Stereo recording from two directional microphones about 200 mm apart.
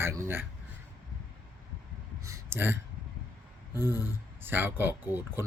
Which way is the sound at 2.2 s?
15° right (ahead or behind).